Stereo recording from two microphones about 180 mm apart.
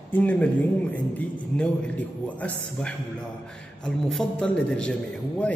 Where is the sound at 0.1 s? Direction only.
10° left (ahead or behind).